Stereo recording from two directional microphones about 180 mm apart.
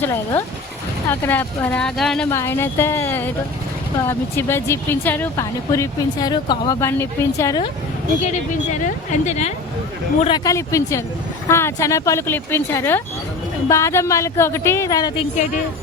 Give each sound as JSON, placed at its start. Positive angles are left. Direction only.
{"t": 0.0, "sound": "speech", "side_deg": 10}
{"t": 2.3, "sound": "speech", "side_deg": 15}
{"t": 8.3, "sound": "speech", "side_deg": 40}
{"t": 10.2, "sound": "speech", "side_deg": 25}